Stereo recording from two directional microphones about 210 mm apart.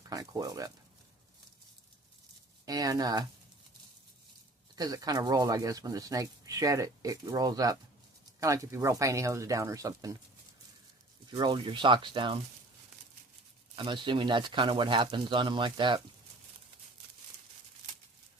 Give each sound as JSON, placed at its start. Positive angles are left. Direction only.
{"t": 0.1, "sound": "a sound", "side_deg": -15}
{"t": 2.6, "sound": "speech", "side_deg": -15}
{"t": 4.7, "sound": "speech", "side_deg": -15}
{"t": 11.3, "sound": "speech", "side_deg": -20}
{"t": 13.7, "sound": "speech", "side_deg": -25}